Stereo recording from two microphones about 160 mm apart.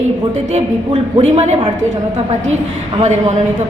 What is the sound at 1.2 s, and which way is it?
Speech, 40° right (ahead or behind).